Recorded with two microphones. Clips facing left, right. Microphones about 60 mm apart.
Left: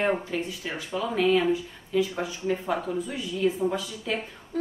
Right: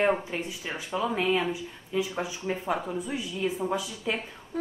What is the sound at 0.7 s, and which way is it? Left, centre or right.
A woman's voice, centre.